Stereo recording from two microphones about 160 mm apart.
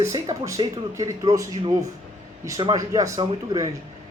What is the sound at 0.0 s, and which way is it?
A man's voice, 20° right (ahead or behind).